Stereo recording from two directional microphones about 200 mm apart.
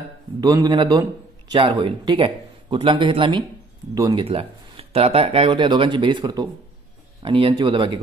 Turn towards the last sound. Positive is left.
turn(degrees=-25)  # may be behind; listen again after turning